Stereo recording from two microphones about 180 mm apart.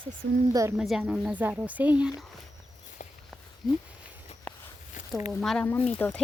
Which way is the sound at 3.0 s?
45° left (ahead or behind).